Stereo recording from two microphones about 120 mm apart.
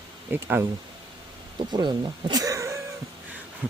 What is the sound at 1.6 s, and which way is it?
Speech, 40° right (ahead or behind).